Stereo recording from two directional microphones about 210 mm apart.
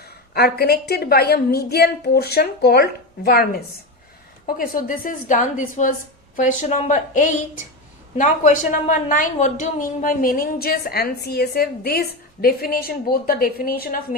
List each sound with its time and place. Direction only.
0.0 s a woman's voice: 50° left (ahead or behind)
4.4 s a woman's voice: 45° left (ahead or behind)